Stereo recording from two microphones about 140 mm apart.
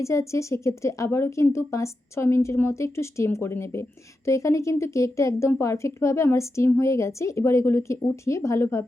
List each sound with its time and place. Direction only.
0.0 s a woman's voice: 20° left (ahead or behind)